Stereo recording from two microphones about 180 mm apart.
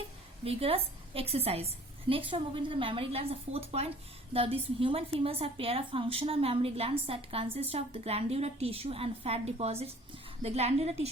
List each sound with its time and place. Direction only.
0.4 s a woman's voice: 30° right (ahead or behind)